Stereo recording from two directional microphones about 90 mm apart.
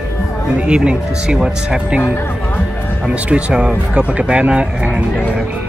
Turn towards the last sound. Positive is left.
turn(degrees=-15)  # may be behind; listen again after turning